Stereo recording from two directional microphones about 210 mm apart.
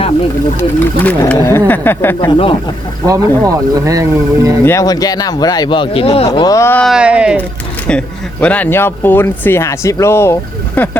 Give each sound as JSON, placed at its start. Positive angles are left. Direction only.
{"t": 1.0, "sound": "speech", "side_deg": 10}
{"t": 3.1, "sound": "speech", "side_deg": -15}
{"t": 4.6, "sound": "speech", "side_deg": 15}
{"t": 7.9, "sound": "speech", "side_deg": 5}